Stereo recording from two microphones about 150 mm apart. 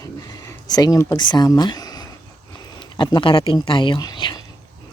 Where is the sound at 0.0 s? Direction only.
25° left (ahead or behind).